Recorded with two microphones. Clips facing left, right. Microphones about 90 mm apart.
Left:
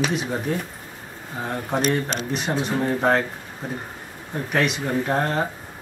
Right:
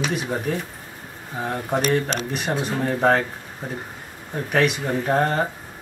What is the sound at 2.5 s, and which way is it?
Speech, 5° right (ahead or behind).